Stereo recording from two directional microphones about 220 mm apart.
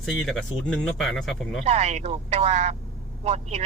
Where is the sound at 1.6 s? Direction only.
30° right (ahead or behind).